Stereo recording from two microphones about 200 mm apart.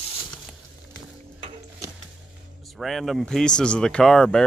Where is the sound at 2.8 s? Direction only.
Centre (ahead or behind).